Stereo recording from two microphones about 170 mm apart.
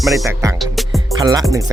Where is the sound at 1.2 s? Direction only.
20° right (ahead or behind).